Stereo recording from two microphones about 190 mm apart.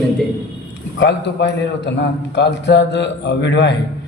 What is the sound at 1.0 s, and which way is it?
A man's voice, 65° left (ahead or behind).